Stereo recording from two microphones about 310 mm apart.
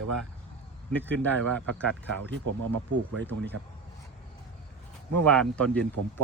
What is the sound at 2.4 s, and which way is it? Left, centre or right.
Speech, right.